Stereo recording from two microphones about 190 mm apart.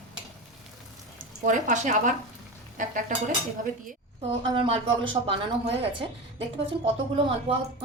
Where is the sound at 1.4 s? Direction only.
40° right (ahead or behind).